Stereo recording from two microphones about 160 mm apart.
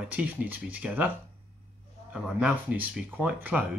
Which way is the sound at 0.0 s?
10° right (ahead or behind).